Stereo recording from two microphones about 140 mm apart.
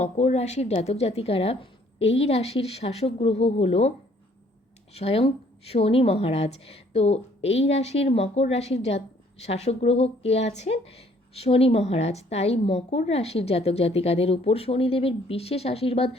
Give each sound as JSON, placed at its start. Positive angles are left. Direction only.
{"t": 0.0, "sound": "speech", "side_deg": 50}
{"t": 4.9, "sound": "speech", "side_deg": 45}